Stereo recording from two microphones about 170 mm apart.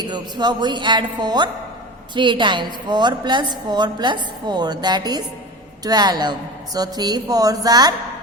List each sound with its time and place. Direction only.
0.0 s a woman's voice: 25° right (ahead or behind)